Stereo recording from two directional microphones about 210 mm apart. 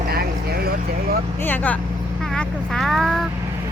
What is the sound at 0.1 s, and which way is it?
Vehicle, 45° right (ahead or behind).